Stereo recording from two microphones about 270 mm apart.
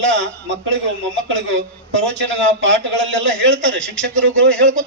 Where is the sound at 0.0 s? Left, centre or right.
Right.